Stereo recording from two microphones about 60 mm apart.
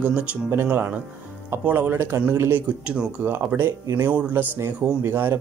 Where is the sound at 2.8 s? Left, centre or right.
Centre.